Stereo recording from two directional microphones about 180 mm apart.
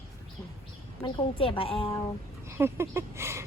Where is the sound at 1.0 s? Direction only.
30° left (ahead or behind).